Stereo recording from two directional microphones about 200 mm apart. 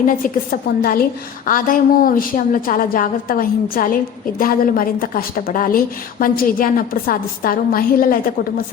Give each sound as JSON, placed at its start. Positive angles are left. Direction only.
{"t": 0.1, "sound": "a woman's voice", "side_deg": 45}